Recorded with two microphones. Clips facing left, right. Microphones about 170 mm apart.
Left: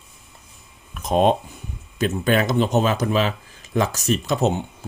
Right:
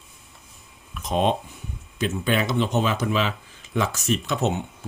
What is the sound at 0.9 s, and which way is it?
Speech, 45° left (ahead or behind).